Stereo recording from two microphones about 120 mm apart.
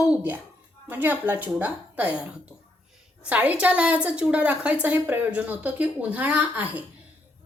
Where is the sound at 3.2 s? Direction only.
15° right (ahead or behind).